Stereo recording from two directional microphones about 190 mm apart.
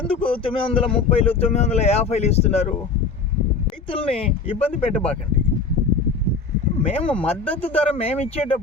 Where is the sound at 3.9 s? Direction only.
30° left (ahead or behind).